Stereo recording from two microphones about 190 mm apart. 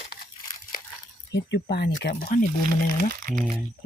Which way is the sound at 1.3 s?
65° left (ahead or behind).